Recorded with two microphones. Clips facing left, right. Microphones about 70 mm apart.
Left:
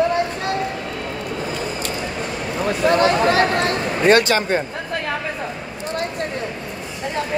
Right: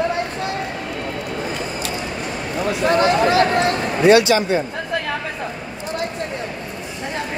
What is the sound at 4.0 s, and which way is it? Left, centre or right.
Speech, left.